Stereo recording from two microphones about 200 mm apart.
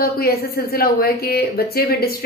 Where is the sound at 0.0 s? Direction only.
50° left (ahead or behind).